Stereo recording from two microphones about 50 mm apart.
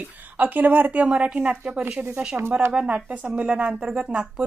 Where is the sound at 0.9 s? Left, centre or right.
Right.